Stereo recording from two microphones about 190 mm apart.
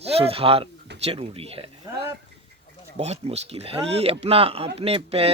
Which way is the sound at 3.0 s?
35° right (ahead or behind).